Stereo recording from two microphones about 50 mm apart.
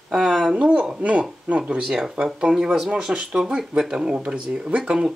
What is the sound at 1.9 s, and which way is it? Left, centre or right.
Speech, centre.